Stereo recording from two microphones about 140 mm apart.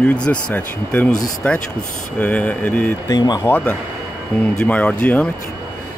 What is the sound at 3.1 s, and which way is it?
Speech, 30° left (ahead or behind).